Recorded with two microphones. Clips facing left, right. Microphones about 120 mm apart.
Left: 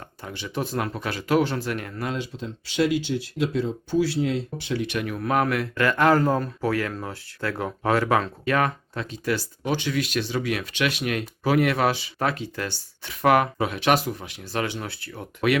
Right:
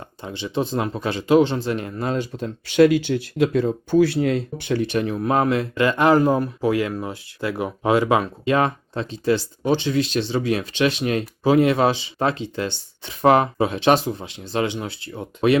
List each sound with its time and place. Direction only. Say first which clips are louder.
0.2 s speech: right 5 dB; 25° right (ahead or behind)
2.1 s speech: right 6 dB; 50° right (ahead or behind)
4.8 s speech: right 7 dB; 35° right (ahead or behind)